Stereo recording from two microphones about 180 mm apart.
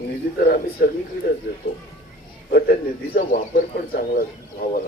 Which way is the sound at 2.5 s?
55° left (ahead or behind).